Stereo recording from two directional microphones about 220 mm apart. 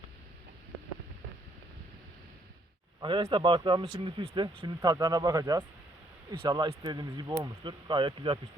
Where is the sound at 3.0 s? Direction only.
20° right (ahead or behind).